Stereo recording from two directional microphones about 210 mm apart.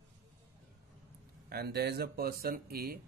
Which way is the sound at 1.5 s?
50° right (ahead or behind).